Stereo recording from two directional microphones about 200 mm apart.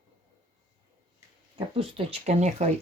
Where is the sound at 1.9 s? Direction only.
30° right (ahead or behind).